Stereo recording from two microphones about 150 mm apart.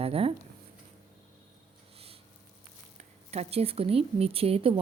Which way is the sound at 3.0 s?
45° right (ahead or behind).